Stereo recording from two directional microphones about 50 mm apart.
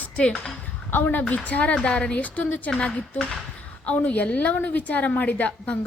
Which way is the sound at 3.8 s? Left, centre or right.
Left.